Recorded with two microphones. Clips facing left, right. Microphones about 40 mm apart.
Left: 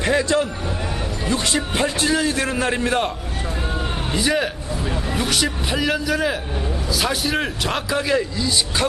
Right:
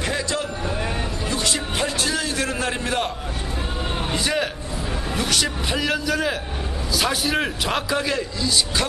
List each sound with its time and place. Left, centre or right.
0.0 s a sound: left
1.3 s a man's voice: left
4.1 s a man's voice: centre